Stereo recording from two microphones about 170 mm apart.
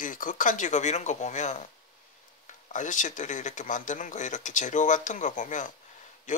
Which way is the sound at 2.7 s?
50° left (ahead or behind).